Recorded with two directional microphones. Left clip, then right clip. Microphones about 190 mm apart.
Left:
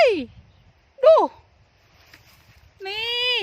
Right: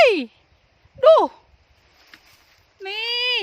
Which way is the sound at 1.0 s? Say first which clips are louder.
Right 1 dB; 15° right (ahead or behind).